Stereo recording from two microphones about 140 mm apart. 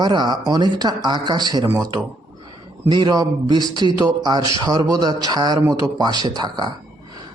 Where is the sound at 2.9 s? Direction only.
30° right (ahead or behind).